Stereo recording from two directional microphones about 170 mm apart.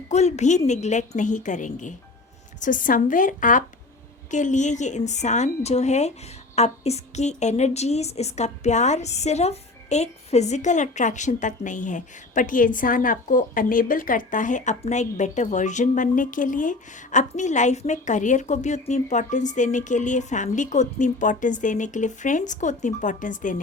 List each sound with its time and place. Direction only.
0.1 s a woman's voice: 40° left (ahead or behind)